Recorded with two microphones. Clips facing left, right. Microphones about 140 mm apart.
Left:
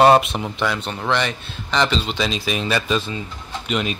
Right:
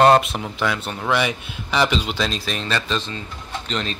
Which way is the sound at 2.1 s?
5° left (ahead or behind).